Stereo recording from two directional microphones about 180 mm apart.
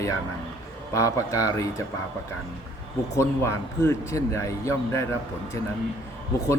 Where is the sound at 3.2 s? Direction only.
15° left (ahead or behind).